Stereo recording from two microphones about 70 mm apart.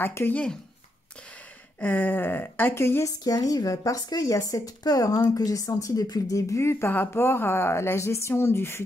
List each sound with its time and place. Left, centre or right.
0.0 s speech: left
0.3 s speech: centre
1.8 s speech: left
3.1 s speech: left